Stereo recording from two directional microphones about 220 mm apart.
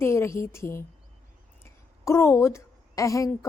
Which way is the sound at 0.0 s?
10° left (ahead or behind).